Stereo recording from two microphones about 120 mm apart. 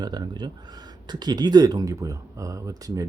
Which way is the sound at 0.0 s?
35° right (ahead or behind).